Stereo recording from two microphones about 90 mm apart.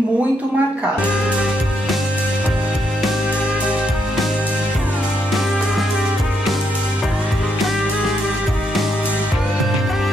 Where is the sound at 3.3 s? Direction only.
15° right (ahead or behind).